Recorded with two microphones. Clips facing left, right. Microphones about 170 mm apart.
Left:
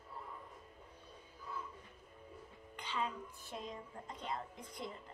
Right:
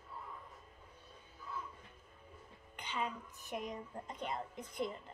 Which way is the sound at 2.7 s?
20° right (ahead or behind).